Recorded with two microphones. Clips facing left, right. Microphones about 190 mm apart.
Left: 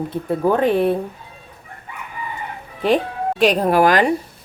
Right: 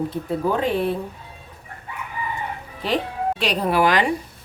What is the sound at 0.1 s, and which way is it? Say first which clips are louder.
Speech: left 4 dB; 55° left (ahead or behind).